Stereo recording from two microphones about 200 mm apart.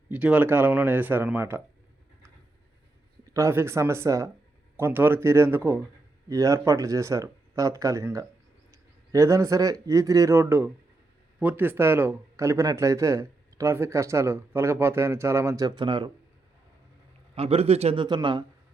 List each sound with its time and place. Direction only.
0.1 s speech: 5° right (ahead or behind)
3.3 s speech: 15° right (ahead or behind)
17.3 s a man's voice: 30° right (ahead or behind)